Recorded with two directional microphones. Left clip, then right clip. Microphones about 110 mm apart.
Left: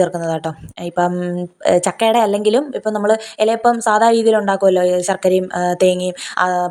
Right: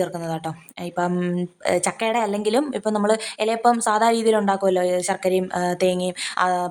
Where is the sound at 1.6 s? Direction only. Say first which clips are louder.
Left 8 dB; 30° left (ahead or behind).